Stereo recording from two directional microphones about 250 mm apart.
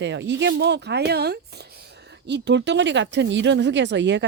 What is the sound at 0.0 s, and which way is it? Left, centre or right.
Speech, right.